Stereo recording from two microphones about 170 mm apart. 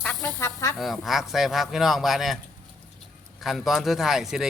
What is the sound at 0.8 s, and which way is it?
Speech, centre (ahead or behind).